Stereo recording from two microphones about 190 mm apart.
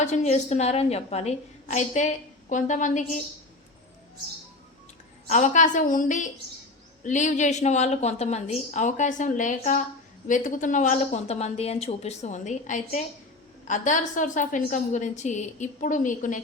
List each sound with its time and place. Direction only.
0.0 s a woman's voice: 40° left (ahead or behind)
5.3 s a woman's voice: 40° left (ahead or behind)